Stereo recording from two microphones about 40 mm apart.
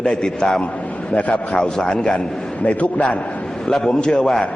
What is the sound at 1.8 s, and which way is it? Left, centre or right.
Speech, centre.